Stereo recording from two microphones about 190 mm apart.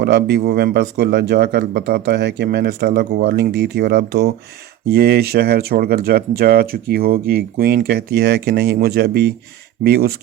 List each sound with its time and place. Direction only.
0.0 s speech: 60° right (ahead or behind)